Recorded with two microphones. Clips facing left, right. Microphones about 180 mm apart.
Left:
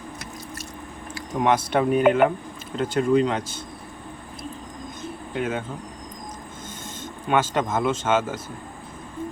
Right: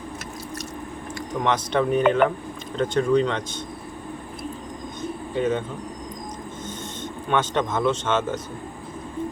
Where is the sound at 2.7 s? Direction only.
5° left (ahead or behind).